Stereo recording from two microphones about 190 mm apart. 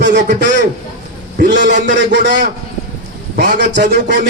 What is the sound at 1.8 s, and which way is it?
Speech, 65° right (ahead or behind).